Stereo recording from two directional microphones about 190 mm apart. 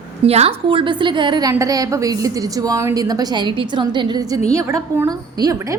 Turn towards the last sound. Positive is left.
turn(degrees=-15)  # may be behind; listen again after turning